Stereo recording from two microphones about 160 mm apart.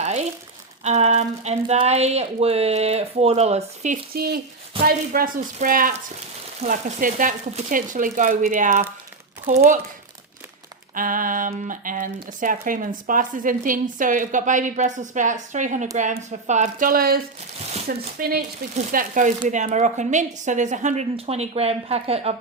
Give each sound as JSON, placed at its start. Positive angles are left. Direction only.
{"t": 0.0, "sound": "crumpling", "side_deg": -45}
{"t": 0.9, "sound": "speech", "side_deg": -45}
{"t": 4.1, "sound": "a woman's voice", "side_deg": -70}
{"t": 10.9, "sound": "a woman's voice", "side_deg": -55}
{"t": 16.9, "sound": "speech", "side_deg": -70}
{"t": 18.8, "sound": "a woman's voice", "side_deg": -55}